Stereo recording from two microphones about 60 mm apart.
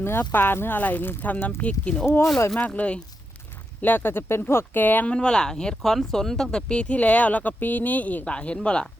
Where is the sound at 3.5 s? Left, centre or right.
Left.